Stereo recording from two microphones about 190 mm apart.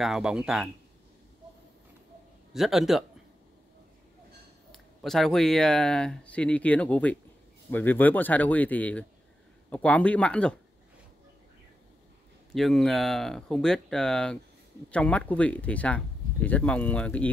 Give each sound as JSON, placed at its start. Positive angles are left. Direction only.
{"t": 0.0, "sound": "speech", "side_deg": -5}
{"t": 2.5, "sound": "speech", "side_deg": 0}
{"t": 4.7, "sound": "speech", "side_deg": 0}
{"t": 12.5, "sound": "speech", "side_deg": 0}